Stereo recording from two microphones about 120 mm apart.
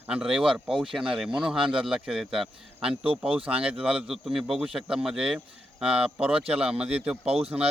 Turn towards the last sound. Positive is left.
turn(degrees=-10)  # may be behind; listen again after turning